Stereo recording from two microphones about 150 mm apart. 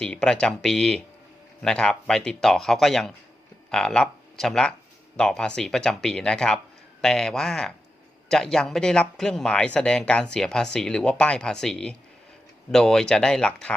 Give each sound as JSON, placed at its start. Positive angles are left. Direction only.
{"t": 0.0, "sound": "speech", "side_deg": 5}